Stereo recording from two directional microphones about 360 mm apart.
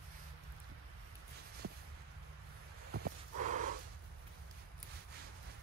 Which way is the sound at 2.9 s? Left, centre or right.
Right.